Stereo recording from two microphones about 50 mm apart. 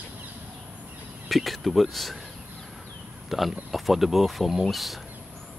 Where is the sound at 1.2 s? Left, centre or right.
Centre.